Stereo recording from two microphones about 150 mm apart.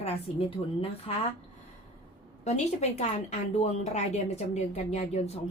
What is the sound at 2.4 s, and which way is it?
A woman's voice, 50° left (ahead or behind).